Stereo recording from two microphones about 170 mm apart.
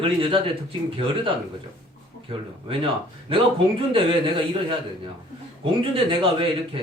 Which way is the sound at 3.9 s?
30° right (ahead or behind).